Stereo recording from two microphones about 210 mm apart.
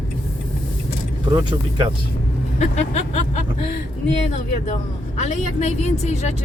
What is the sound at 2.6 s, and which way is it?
Speech, 35° left (ahead or behind).